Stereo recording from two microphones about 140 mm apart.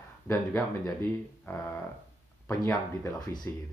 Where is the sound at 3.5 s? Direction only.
20° left (ahead or behind).